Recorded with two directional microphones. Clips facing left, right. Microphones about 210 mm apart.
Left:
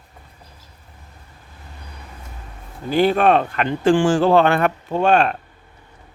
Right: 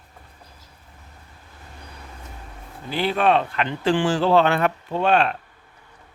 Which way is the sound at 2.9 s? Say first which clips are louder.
Left 5 dB; 45° left (ahead or behind).